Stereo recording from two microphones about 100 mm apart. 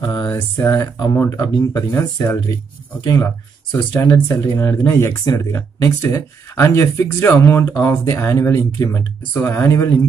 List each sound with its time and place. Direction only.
0.0 s a sound: 45° left (ahead or behind)
0.3 s speech: 35° left (ahead or behind)
9.3 s speech: 25° left (ahead or behind)